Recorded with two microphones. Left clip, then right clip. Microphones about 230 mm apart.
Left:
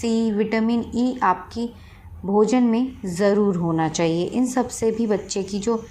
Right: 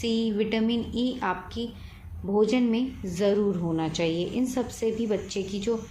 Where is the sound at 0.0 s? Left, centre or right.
Left.